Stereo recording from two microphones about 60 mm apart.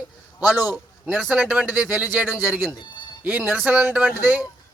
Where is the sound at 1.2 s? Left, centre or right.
Centre.